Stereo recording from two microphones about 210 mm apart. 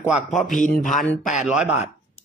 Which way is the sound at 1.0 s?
5° left (ahead or behind).